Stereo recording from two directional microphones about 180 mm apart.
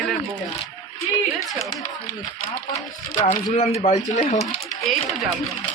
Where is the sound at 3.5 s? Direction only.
35° left (ahead or behind).